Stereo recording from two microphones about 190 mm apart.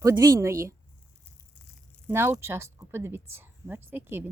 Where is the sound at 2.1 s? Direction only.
10° right (ahead or behind).